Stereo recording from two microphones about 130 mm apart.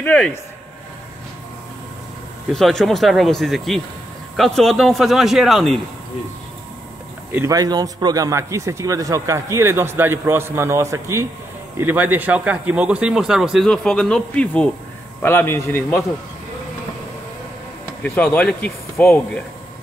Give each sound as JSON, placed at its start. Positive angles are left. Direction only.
{"t": 0.0, "sound": "speech", "side_deg": 10}
{"t": 2.5, "sound": "a man's voice", "side_deg": 0}
{"t": 7.3, "sound": "a man's voice", "side_deg": -25}
{"t": 18.0, "sound": "speech", "side_deg": 10}